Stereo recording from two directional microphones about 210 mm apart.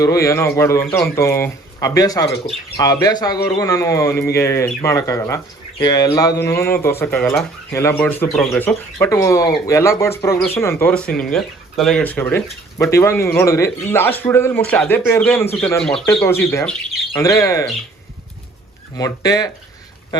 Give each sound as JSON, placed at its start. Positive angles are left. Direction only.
{"t": 0.0, "sound": "speech", "side_deg": 15}
{"t": 18.9, "sound": "speech", "side_deg": 15}